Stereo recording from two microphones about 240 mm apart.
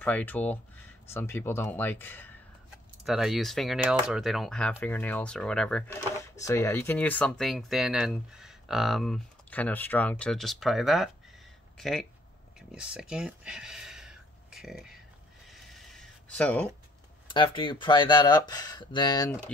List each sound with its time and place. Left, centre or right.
0.0 s speech: centre
12.5 s a sound: centre
17.3 s speech: centre